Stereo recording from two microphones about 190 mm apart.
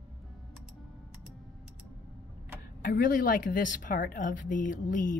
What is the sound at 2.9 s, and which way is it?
A woman's voice, 45° left (ahead or behind).